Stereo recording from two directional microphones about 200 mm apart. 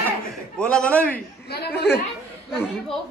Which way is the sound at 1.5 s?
55° left (ahead or behind).